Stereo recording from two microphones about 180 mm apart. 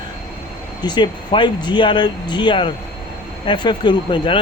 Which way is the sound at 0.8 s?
25° left (ahead or behind).